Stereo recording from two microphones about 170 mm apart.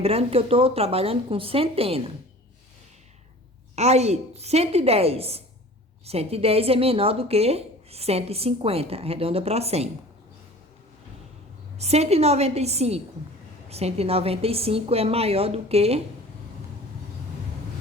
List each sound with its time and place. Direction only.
0.0 s speech: 35° right (ahead or behind)
3.8 s speech: 40° right (ahead or behind)
11.8 s speech: 40° right (ahead or behind)